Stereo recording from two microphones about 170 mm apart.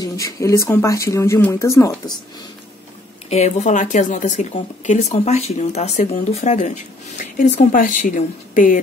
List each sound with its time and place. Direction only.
0.0 s speech: 20° left (ahead or behind)
3.3 s speech: 40° left (ahead or behind)